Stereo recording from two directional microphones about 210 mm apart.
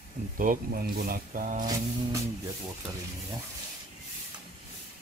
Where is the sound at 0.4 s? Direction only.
45° right (ahead or behind).